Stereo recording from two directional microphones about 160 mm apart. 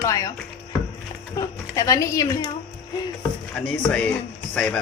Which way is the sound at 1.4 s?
20° left (ahead or behind).